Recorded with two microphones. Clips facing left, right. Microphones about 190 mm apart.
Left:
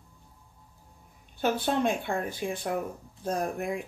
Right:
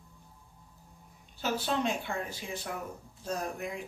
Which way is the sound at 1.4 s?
55° left (ahead or behind).